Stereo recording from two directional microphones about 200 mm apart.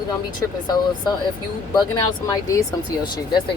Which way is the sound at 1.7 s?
20° left (ahead or behind).